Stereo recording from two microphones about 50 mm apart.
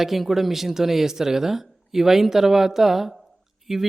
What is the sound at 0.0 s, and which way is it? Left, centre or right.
A woman's voice, centre.